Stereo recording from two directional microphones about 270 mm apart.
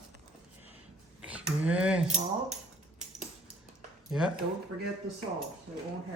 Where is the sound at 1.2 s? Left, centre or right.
Centre.